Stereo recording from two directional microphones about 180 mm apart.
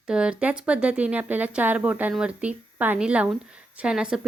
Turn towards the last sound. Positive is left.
turn(degrees=-5)  # may be behind; listen again after turning